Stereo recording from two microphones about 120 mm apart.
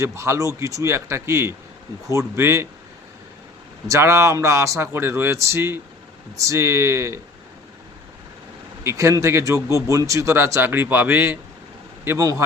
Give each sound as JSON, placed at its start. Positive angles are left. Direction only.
{"t": 0.0, "sound": "speech", "side_deg": -25}
{"t": 3.8, "sound": "speech", "side_deg": -25}
{"t": 8.8, "sound": "speech", "side_deg": -25}
{"t": 9.6, "sound": "a man's voice", "side_deg": 30}
{"t": 9.9, "sound": "speech", "side_deg": -25}